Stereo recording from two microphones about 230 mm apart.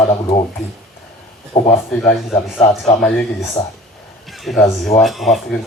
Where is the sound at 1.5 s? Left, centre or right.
Left.